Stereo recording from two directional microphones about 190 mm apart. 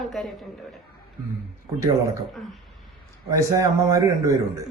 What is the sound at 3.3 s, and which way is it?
A man's voice, 15° right (ahead or behind).